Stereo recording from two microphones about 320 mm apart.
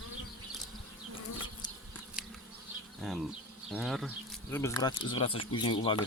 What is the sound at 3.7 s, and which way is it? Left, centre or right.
Speech, centre.